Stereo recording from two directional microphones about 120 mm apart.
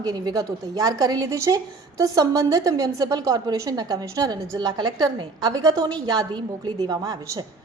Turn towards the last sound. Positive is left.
turn(degrees=-30)  # may be behind; listen again after turning